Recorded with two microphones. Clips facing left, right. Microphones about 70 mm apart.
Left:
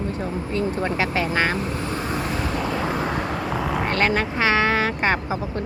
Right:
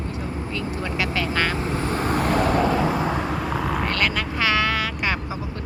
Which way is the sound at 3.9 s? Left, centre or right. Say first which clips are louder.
Left 3 dB; left.